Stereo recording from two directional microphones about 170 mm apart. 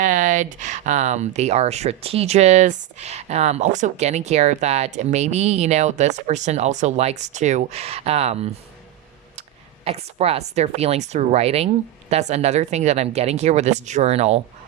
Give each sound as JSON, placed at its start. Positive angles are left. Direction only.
{"t": 0.0, "sound": "speech", "side_deg": -50}
{"t": 9.8, "sound": "speech", "side_deg": -35}